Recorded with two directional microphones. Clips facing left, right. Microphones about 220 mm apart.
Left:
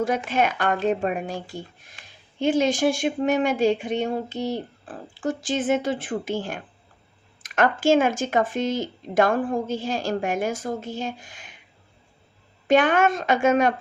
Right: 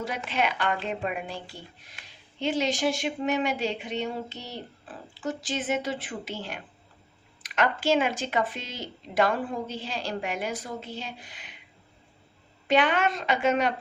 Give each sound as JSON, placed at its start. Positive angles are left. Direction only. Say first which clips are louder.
{"t": 0.3, "sound": "speech", "louder": "left 5 dB", "side_deg": 45}
{"t": 12.6, "sound": "speech", "louder": "left 5 dB", "side_deg": 50}